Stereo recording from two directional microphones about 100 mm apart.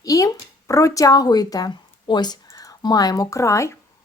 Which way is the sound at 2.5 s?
35° left (ahead or behind).